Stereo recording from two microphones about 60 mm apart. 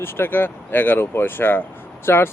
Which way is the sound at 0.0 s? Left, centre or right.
Left.